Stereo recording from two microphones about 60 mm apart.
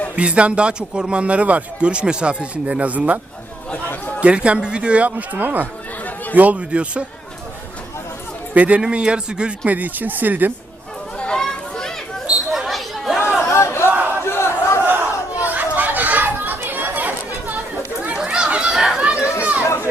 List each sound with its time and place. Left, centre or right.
0.2 s a man's voice: centre
3.8 s chatter: left
4.2 s a man's voice: centre
8.5 s a man's voice: right
11.2 s children playing: centre
12.5 s chatter: centre
13.5 s a sound: left
14.3 s crowd: left
14.8 s chatter: right
18.2 s chatter: centre
19.1 s a sound: left